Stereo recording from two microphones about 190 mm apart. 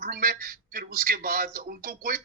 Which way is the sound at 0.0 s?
50° right (ahead or behind).